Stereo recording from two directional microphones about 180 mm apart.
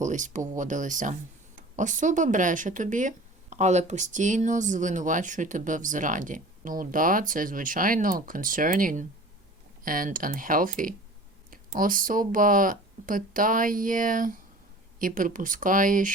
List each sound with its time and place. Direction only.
0.0 s speech: 45° right (ahead or behind)